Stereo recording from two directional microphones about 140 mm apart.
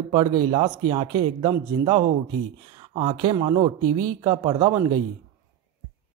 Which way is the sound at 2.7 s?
35° right (ahead or behind).